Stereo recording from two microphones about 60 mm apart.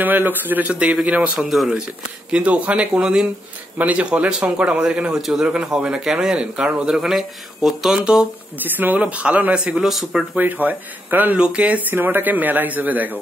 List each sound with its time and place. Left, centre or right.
0.0 s a man's voice: right
1.5 s speech: centre
2.3 s a man's voice: right
3.7 s a man's voice: right
8.6 s speech: right
9.0 s a man's voice: right
9.8 s speech: centre
10.3 s speech: right
11.3 s speech: centre
11.6 s a man's voice: right